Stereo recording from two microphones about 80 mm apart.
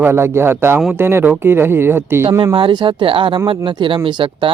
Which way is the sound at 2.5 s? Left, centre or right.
Right.